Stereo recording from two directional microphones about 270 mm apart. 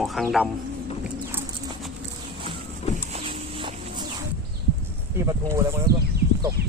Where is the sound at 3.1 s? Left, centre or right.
Centre.